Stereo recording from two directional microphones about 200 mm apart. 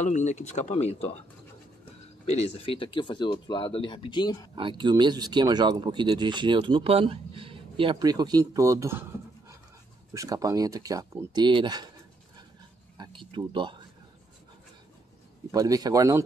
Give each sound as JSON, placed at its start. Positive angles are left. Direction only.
{"t": 0.0, "sound": "speech", "side_deg": 35}
{"t": 2.2, "sound": "speech", "side_deg": 30}
{"t": 4.6, "sound": "speech", "side_deg": -25}
{"t": 10.1, "sound": "speech", "side_deg": -15}
{"t": 12.9, "sound": "speech", "side_deg": -25}
{"t": 15.5, "sound": "speech", "side_deg": -20}